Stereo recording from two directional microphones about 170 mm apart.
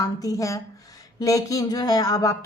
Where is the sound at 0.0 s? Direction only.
20° left (ahead or behind).